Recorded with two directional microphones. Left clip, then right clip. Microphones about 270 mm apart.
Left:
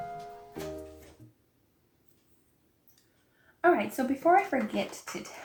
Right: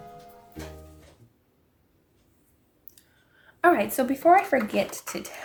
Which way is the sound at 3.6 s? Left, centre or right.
Right.